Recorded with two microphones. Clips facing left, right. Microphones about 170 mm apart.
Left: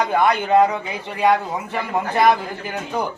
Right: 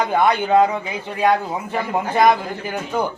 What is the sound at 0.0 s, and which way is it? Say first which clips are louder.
Speech: right 1 dB; 5° right (ahead or behind).